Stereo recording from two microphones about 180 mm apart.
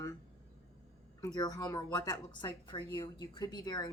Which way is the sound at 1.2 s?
20° left (ahead or behind).